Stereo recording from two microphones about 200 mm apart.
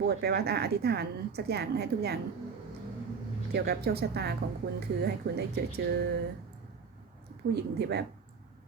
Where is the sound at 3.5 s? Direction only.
50° right (ahead or behind).